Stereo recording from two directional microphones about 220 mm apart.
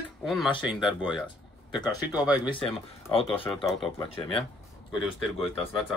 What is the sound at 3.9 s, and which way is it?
Speech, 25° left (ahead or behind).